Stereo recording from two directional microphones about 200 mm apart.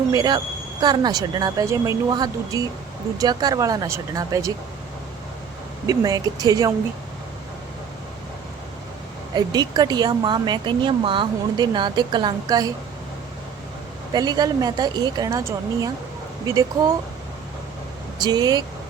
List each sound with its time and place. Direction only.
0.1 s speech: 20° right (ahead or behind)
5.8 s speech: 20° right (ahead or behind)
9.3 s speech: 20° right (ahead or behind)
14.1 s speech: 20° right (ahead or behind)
18.2 s speech: 20° right (ahead or behind)